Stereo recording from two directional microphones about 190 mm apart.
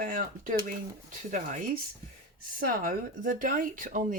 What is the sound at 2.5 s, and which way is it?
Speech, 45° right (ahead or behind).